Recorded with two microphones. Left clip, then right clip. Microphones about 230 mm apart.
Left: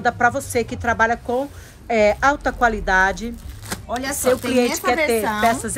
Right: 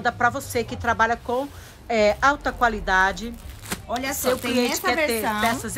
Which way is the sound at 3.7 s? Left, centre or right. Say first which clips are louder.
Left 2 dB; centre.